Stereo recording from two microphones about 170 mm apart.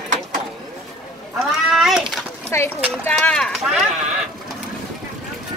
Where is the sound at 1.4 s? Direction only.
Centre (ahead or behind).